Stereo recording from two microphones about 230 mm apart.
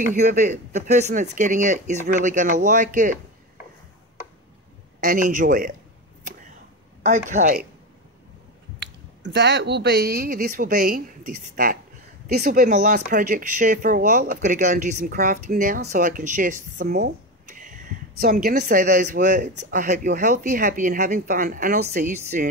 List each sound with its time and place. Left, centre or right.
0.1 s speech: right
5.0 s speech: right
7.0 s speech: right
8.7 s speech: right